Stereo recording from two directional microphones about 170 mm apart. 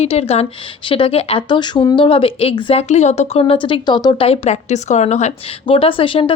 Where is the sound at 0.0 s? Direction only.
40° left (ahead or behind).